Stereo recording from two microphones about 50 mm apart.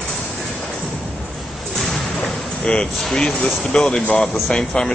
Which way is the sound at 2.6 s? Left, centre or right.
Centre.